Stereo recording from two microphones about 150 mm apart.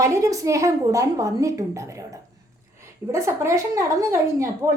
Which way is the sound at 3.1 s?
20° right (ahead or behind).